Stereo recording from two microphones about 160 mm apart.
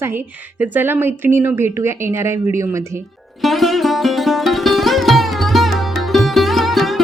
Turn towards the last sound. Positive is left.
turn(degrees=0)  # may be behind; listen again after turning